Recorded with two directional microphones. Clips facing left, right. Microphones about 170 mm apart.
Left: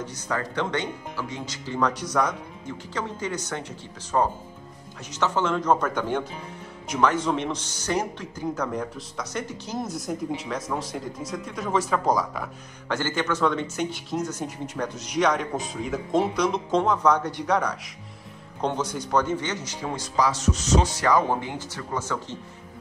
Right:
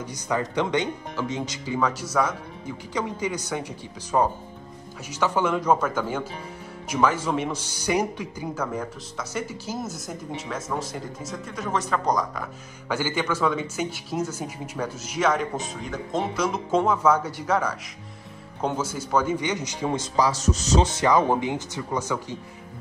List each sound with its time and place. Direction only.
0.0 s speech: 15° right (ahead or behind)
1.8 s a man's voice: 5° right (ahead or behind)
12.9 s a man's voice: 10° right (ahead or behind)
20.2 s speech: 40° right (ahead or behind); by 22.4 s 15° right (ahead or behind)